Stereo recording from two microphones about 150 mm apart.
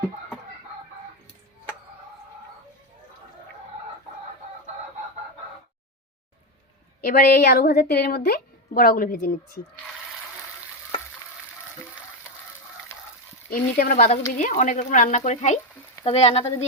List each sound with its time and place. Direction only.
7.0 s a woman's voice: 90° left; by 9.3 s 70° left (ahead or behind)
13.5 s speech: 70° left (ahead or behind)
14.3 s speech: 60° left (ahead or behind)